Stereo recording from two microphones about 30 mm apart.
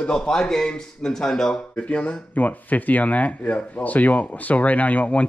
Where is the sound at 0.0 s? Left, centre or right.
Left.